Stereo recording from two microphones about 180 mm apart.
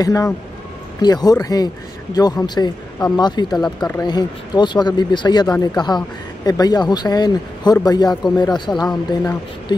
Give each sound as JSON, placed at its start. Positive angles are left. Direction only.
{"t": 0.0, "sound": "speech", "side_deg": 20}
{"t": 3.5, "sound": "speech", "side_deg": 5}
{"t": 3.9, "sound": "speech", "side_deg": 20}
{"t": 8.8, "sound": "speech", "side_deg": 5}